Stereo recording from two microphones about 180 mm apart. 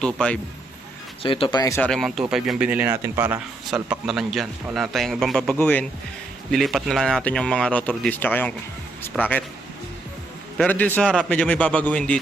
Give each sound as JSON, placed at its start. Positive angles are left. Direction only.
{"t": 0.0, "sound": "speech", "side_deg": 5}
{"t": 1.2, "sound": "speech", "side_deg": 30}
{"t": 1.8, "sound": "speech", "side_deg": 0}
{"t": 3.7, "sound": "speech", "side_deg": -5}
{"t": 10.6, "sound": "a man's voice", "side_deg": 10}